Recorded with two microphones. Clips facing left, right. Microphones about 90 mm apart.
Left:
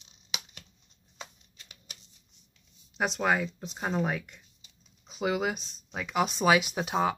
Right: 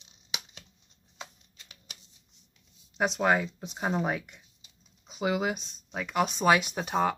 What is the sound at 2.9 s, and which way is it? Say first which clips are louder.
Speech: right 2 dB; centre (ahead or behind).